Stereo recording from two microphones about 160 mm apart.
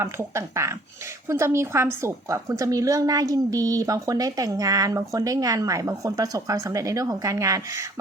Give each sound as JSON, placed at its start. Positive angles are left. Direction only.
{"t": 0.0, "sound": "a woman's voice", "side_deg": -15}